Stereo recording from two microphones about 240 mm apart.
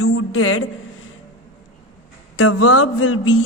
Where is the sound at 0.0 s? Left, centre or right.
Left.